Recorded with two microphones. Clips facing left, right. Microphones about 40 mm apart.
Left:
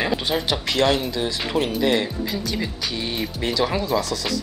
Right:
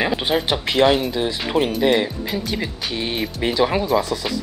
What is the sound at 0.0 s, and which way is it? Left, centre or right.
Speech, centre.